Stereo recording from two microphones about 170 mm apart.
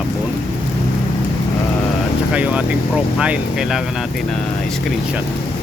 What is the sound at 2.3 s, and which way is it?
Vehicle, 10° right (ahead or behind).